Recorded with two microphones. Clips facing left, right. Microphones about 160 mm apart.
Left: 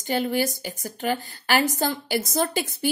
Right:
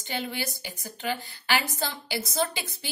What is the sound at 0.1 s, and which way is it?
A woman's voice, 45° left (ahead or behind).